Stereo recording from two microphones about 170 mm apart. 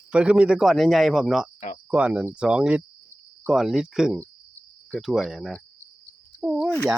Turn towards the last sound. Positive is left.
turn(degrees=-5)  # may be behind; listen again after turning